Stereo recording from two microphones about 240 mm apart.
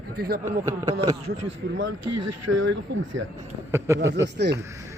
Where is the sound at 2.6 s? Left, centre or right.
Right.